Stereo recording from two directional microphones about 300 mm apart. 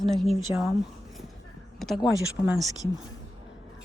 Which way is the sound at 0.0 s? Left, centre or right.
Centre.